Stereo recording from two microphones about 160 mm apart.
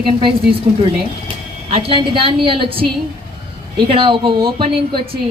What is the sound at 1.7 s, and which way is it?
Speech, 35° right (ahead or behind).